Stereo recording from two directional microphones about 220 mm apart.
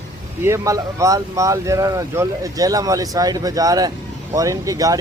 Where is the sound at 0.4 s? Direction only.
15° right (ahead or behind).